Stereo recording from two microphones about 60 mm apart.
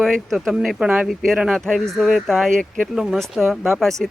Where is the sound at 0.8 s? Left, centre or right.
Centre.